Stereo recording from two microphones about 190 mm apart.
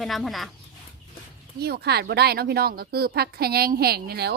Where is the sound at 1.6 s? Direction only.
55° right (ahead or behind).